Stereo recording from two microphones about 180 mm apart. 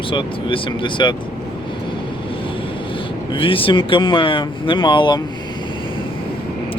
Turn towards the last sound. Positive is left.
turn(degrees=25)  # may be behind; listen again after turning